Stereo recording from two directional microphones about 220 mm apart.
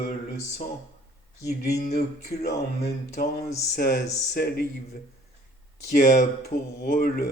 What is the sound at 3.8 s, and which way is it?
Speech, 45° left (ahead or behind).